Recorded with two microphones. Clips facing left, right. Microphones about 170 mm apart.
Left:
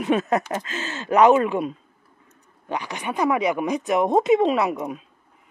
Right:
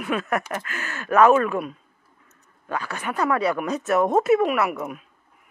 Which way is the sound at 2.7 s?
15° left (ahead or behind).